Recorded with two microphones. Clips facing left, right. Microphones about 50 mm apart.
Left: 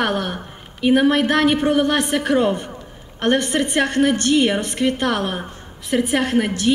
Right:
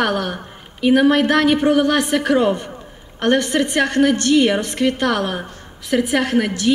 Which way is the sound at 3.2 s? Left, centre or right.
Left.